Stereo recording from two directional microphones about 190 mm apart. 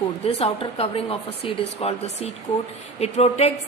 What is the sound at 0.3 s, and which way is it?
A woman's voice, 30° left (ahead or behind).